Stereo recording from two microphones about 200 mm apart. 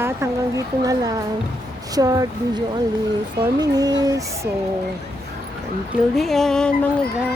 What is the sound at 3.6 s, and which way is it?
Speech, 20° right (ahead or behind).